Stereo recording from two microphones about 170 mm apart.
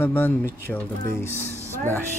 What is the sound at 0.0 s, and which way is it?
Speech, 10° left (ahead or behind).